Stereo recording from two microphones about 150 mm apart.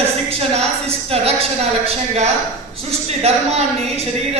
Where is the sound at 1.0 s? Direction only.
40° right (ahead or behind).